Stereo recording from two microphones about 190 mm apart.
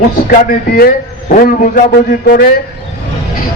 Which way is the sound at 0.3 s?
50° left (ahead or behind).